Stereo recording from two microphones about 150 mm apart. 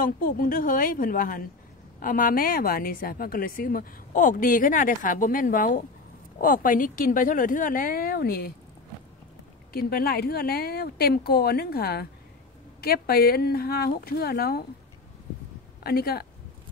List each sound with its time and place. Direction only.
0.0 s a woman's voice: 70° left (ahead or behind); by 8.5 s 90° left
9.7 s speech: 85° left
15.8 s speech: 90° left